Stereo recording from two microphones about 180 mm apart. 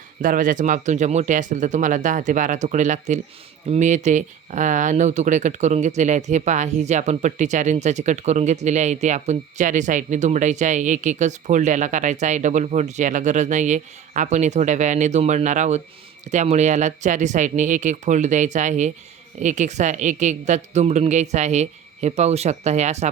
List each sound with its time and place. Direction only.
0.2 s speech: 45° right (ahead or behind)